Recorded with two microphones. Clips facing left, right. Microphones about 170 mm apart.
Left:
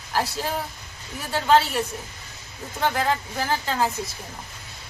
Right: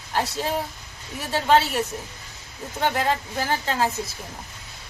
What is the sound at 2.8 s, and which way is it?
A woman's voice, centre (ahead or behind).